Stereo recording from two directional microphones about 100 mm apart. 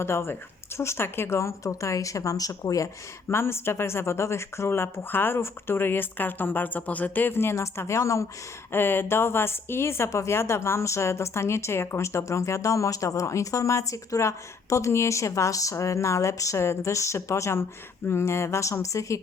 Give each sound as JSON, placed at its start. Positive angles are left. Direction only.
{"t": 0.0, "sound": "speech", "side_deg": 25}
{"t": 3.2, "sound": "speech", "side_deg": 25}